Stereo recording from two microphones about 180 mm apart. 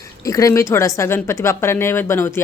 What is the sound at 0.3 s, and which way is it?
A woman's voice, 20° left (ahead or behind).